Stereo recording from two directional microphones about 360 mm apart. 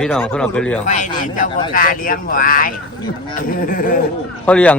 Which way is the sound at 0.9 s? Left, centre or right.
Centre.